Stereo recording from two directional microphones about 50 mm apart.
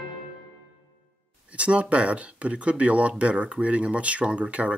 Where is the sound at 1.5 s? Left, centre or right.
Right.